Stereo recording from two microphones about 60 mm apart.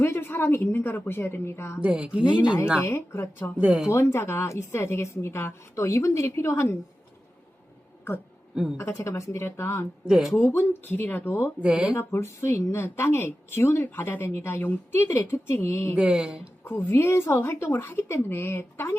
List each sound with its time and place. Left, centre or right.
0.0 s a woman's voice: left
1.9 s speech: centre
2.8 s a woman's voice: left
3.6 s speech: centre
3.9 s a woman's voice: left
8.8 s a woman's voice: left
10.0 s speech: centre
10.3 s a woman's voice: left
11.6 s speech: centre
11.9 s a woman's voice: left
16.0 s speech: centre
16.6 s a woman's voice: left